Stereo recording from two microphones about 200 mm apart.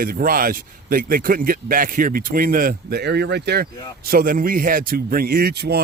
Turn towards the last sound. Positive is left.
turn(degrees=-55)  # may be behind; listen again after turning